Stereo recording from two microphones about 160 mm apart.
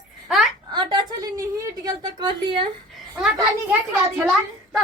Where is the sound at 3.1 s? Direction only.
5° right (ahead or behind).